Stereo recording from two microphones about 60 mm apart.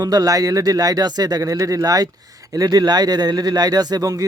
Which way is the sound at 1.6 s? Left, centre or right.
Right.